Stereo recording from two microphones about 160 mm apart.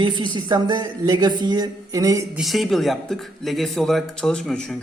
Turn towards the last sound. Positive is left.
turn(degrees=0)  # may be behind; listen again after turning